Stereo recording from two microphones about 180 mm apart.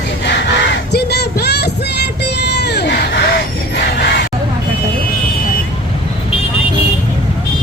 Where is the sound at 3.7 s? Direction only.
70° left (ahead or behind).